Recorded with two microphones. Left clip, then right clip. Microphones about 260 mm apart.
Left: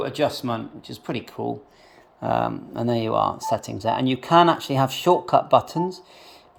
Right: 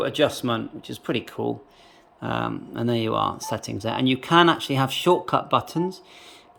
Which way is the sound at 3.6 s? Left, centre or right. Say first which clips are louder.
Left 2 dB; centre.